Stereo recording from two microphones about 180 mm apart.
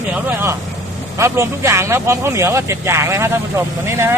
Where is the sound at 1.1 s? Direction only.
15° right (ahead or behind).